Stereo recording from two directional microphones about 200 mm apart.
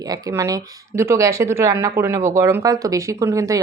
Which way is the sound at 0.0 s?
15° right (ahead or behind).